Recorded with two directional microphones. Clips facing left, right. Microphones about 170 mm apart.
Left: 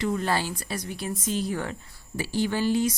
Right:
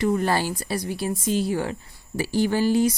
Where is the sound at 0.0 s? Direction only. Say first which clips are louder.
Right 4 dB; 40° right (ahead or behind).